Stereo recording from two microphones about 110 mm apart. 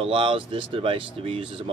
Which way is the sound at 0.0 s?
55° right (ahead or behind).